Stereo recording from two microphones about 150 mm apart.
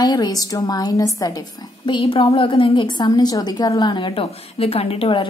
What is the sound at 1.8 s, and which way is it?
A woman's voice, 35° left (ahead or behind).